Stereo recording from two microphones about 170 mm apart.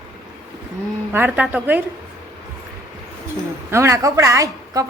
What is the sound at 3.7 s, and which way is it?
A woman's voice, 15° right (ahead or behind).